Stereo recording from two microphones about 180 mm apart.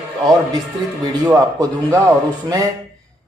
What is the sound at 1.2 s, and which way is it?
Speech, 15° right (ahead or behind).